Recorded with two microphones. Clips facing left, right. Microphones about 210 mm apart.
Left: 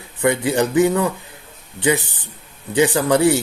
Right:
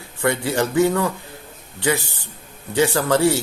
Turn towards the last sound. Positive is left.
turn(degrees=15)  # may be behind; listen again after turning